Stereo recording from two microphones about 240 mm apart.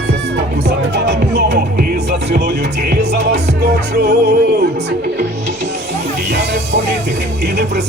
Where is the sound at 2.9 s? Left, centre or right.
Right.